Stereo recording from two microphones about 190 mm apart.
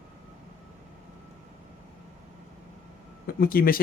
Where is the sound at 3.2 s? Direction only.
50° left (ahead or behind).